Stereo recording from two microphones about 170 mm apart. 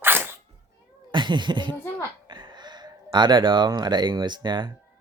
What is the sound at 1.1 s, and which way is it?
Speech, 25° right (ahead or behind).